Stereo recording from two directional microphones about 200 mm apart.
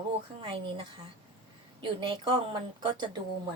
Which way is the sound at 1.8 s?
25° right (ahead or behind).